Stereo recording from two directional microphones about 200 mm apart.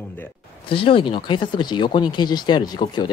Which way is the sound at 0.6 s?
25° left (ahead or behind).